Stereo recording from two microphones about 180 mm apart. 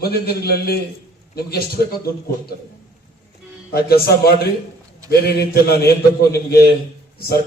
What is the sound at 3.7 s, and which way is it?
Speech, 60° left (ahead or behind).